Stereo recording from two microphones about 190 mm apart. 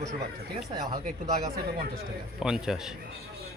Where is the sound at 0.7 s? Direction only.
20° right (ahead or behind).